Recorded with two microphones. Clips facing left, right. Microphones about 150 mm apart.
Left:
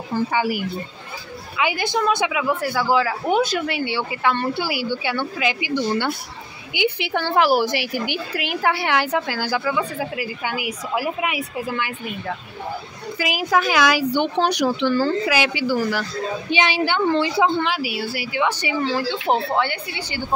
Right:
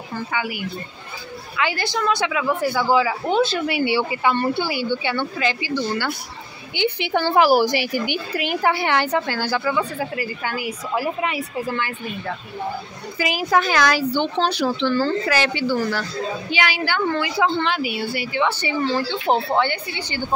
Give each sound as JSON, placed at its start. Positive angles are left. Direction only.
{"t": 0.1, "sound": "speech", "side_deg": 30}
{"t": 1.6, "sound": "speech", "side_deg": 15}
{"t": 3.6, "sound": "a woman's voice", "side_deg": -10}
{"t": 4.6, "sound": "speech", "side_deg": 10}
{"t": 6.7, "sound": "a woman's voice", "side_deg": 5}
{"t": 13.2, "sound": "speech", "side_deg": 5}
{"t": 16.4, "sound": "a woman's voice", "side_deg": 25}
{"t": 17.6, "sound": "a woman's voice", "side_deg": 5}